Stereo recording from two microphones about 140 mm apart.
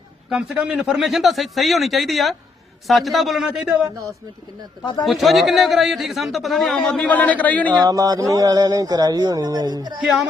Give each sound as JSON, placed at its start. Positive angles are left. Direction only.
{"t": 0.3, "sound": "speech", "side_deg": -5}
{"t": 5.0, "sound": "speech", "side_deg": 0}
{"t": 7.7, "sound": "speech", "side_deg": -25}
{"t": 10.0, "sound": "speech", "side_deg": 0}